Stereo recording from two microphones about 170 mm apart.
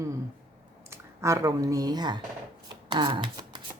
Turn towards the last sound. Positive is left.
turn(degrees=-25)  # may be behind; listen again after turning